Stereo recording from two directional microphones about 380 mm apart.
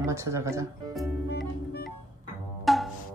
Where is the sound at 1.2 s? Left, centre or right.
Left.